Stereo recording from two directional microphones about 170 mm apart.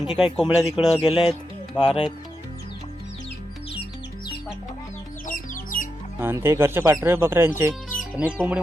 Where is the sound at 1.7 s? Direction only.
30° left (ahead or behind).